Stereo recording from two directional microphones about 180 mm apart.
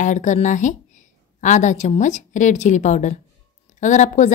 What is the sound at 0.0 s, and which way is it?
A woman's voice, 45° left (ahead or behind).